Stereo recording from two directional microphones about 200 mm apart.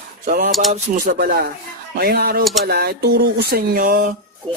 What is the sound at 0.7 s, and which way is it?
Speech, 45° right (ahead or behind).